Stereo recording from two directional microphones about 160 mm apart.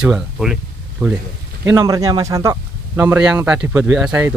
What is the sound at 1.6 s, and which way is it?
Speech, 20° right (ahead or behind).